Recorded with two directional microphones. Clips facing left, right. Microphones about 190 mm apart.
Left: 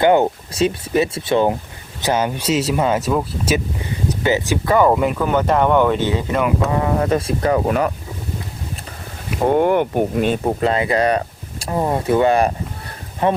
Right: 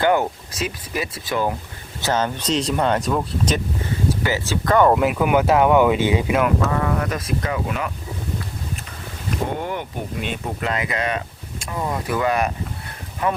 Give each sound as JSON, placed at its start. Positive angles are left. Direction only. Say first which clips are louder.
{"t": 0.0, "sound": "speech", "louder": "left 5 dB", "side_deg": 25}
{"t": 2.0, "sound": "speech", "louder": "left 3 dB", "side_deg": 15}
{"t": 4.1, "sound": "speech", "louder": "left 9 dB", "side_deg": 20}
{"t": 4.6, "sound": "speech", "louder": "even", "side_deg": 5}
{"t": 6.7, "sound": "speech", "louder": "left 5 dB", "side_deg": 25}
{"t": 9.5, "sound": "speech", "louder": "left 11 dB", "side_deg": 55}